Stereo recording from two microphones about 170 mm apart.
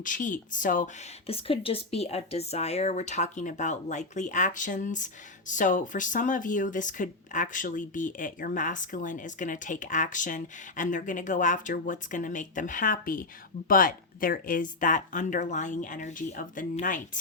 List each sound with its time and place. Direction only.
0.0 s speech: 50° left (ahead or behind)
1.3 s speech: 35° left (ahead or behind); by 17.0 s 50° left (ahead or behind)